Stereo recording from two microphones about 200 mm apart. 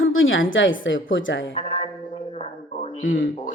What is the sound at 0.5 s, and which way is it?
Speech, 70° left (ahead or behind).